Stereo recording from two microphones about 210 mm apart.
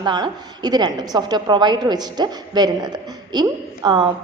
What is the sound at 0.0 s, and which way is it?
A woman's voice, 20° right (ahead or behind).